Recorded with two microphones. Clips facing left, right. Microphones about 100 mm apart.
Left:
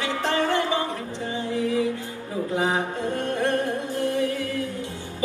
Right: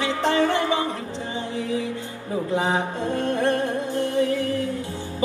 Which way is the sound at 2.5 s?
25° right (ahead or behind).